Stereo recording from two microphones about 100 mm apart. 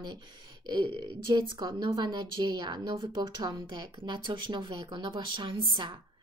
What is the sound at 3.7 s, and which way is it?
A woman's voice, 50° right (ahead or behind).